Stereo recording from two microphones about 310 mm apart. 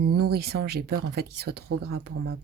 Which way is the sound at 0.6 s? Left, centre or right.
Right.